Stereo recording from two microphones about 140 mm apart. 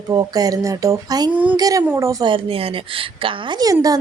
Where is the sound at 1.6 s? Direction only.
25° right (ahead or behind).